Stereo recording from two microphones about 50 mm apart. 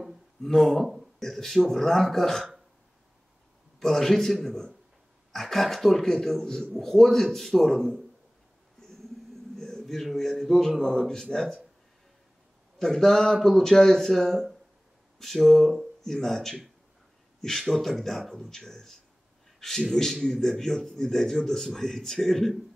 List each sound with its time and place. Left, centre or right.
0.4 s a man's voice: centre
3.8 s a man's voice: centre
9.3 s a sound: centre
10.8 s a man's voice: centre
12.7 s a man's voice: centre